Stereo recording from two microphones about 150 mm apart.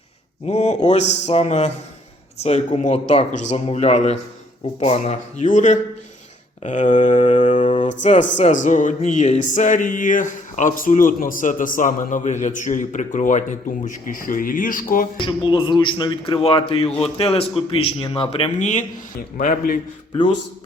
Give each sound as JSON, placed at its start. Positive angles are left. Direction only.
{"t": 0.4, "sound": "a man's voice", "side_deg": 45}
{"t": 15.2, "sound": "a man's voice", "side_deg": 35}
{"t": 19.4, "sound": "speech", "side_deg": 65}